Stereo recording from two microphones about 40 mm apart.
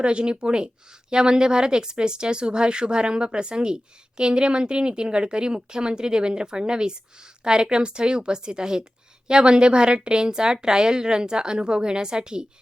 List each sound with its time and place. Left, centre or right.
0.0 s speech: right